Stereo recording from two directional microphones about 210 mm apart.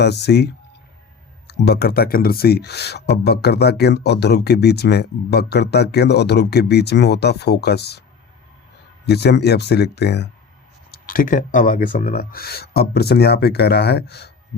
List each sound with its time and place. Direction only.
0.0 s speech: 55° left (ahead or behind)
9.0 s speech: 50° left (ahead or behind)
11.0 s speech: 40° left (ahead or behind)